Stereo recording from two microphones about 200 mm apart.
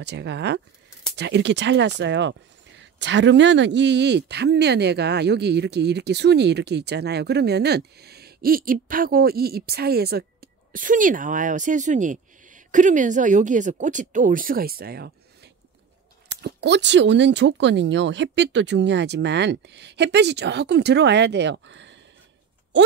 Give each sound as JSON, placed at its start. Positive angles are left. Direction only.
{"t": 0.0, "sound": "speech", "side_deg": -60}
{"t": 16.3, "sound": "speech", "side_deg": -60}